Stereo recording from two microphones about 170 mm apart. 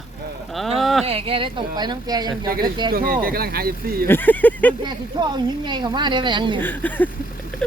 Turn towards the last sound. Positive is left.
turn(degrees=5)  # may be behind; listen again after turning